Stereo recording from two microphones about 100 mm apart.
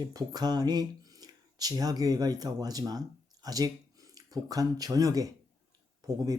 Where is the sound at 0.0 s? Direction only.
40° right (ahead or behind).